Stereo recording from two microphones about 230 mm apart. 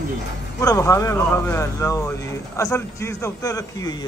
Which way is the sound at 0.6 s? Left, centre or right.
Centre.